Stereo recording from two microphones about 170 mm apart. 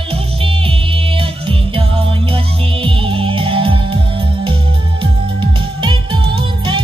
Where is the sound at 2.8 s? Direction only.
30° right (ahead or behind).